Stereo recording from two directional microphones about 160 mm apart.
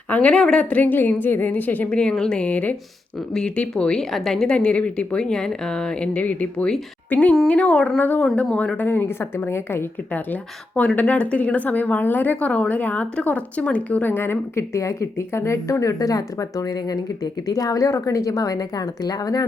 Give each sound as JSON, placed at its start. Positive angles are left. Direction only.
{"t": 0.1, "sound": "a woman's voice", "side_deg": 10}